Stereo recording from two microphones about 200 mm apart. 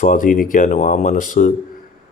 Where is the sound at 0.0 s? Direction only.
40° left (ahead or behind).